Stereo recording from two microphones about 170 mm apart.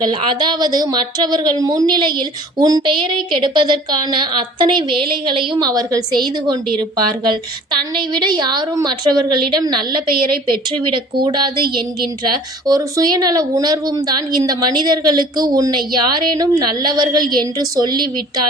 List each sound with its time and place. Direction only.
0.0 s a woman's voice: 25° right (ahead or behind)
7.9 s a woman's voice: 25° right (ahead or behind)